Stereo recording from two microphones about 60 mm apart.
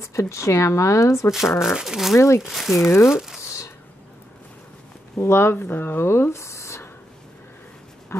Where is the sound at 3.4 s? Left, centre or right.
Left.